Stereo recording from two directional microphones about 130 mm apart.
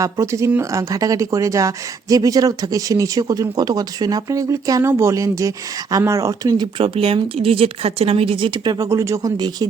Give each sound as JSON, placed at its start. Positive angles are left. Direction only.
{"t": 0.0, "sound": "speech", "side_deg": -25}
{"t": 6.7, "sound": "speech", "side_deg": -45}